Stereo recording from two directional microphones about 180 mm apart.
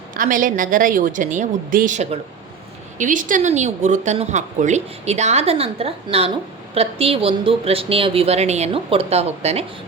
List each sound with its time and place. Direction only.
0.1 s a woman's voice: 45° right (ahead or behind)